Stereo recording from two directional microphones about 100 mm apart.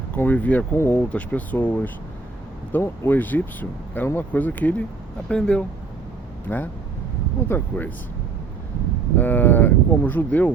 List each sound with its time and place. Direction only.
0.1 s speech: 15° left (ahead or behind)
6.5 s speech: 25° left (ahead or behind)
9.1 s speech: 20° left (ahead or behind)